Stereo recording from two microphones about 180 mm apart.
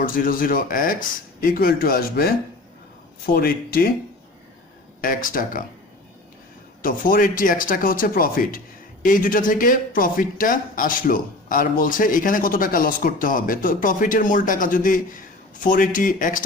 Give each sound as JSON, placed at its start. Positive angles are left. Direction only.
{"t": 0.0, "sound": "speech", "side_deg": 50}
{"t": 4.9, "sound": "speech", "side_deg": 50}
{"t": 6.8, "sound": "speech", "side_deg": 50}